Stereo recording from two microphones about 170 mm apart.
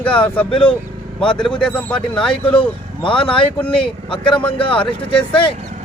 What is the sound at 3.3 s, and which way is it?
Speech, 5° left (ahead or behind).